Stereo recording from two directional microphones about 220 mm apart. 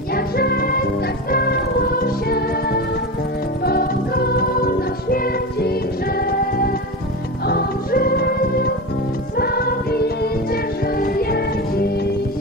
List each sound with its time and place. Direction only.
0.1 s music: 45° left (ahead or behind)